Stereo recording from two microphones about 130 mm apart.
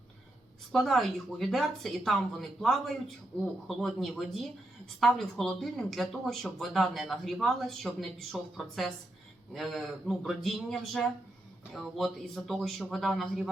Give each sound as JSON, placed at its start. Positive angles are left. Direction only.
{"t": 0.7, "sound": "speech", "side_deg": 0}